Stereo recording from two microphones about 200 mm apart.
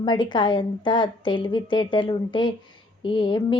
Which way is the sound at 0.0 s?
25° left (ahead or behind).